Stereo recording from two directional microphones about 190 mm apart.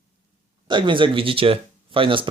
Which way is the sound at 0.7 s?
25° right (ahead or behind).